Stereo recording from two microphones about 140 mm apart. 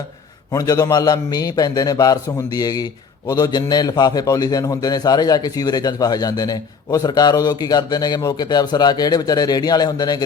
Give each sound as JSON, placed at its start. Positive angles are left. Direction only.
{"t": 0.5, "sound": "a man's voice", "side_deg": 25}